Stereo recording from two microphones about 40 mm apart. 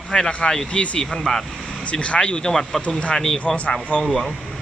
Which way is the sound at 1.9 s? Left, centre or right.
Left.